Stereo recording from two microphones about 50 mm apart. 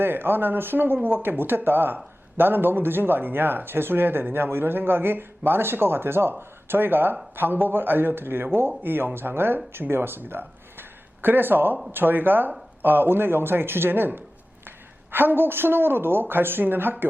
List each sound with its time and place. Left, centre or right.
0.0 s speech: right
15.1 s speech: right